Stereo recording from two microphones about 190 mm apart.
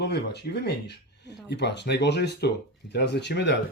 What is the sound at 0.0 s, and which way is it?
Speech, 60° left (ahead or behind).